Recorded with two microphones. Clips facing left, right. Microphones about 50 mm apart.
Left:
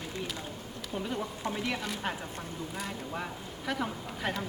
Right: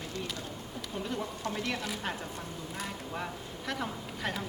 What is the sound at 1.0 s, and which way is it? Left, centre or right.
A woman's voice, centre.